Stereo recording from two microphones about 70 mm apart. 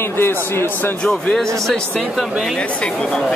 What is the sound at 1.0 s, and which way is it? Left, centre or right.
Speech, centre.